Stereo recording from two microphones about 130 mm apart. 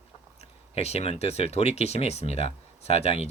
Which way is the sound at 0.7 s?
55° left (ahead or behind).